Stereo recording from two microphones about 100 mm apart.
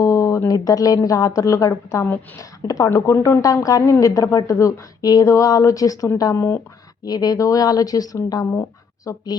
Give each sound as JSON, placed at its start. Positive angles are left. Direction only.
{"t": 0.0, "sound": "speech", "side_deg": 35}